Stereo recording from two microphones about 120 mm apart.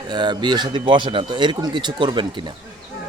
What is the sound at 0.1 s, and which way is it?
Speech, 40° right (ahead or behind).